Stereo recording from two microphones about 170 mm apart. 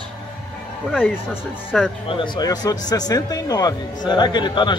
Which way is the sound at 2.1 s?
25° left (ahead or behind).